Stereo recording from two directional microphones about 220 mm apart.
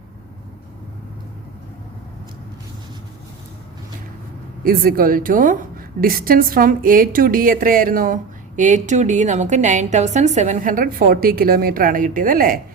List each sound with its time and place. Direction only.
4.6 s a woman's voice: 40° right (ahead or behind)